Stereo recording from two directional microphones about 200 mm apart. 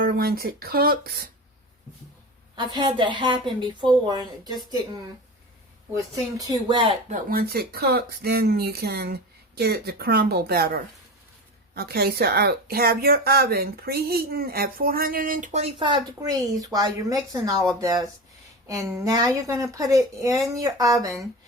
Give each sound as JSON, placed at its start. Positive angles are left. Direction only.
{"t": 0.0, "sound": "speech", "side_deg": -50}
{"t": 2.6, "sound": "speech", "side_deg": -20}
{"t": 5.9, "sound": "speech", "side_deg": -15}
{"t": 7.1, "sound": "a woman's voice", "side_deg": -45}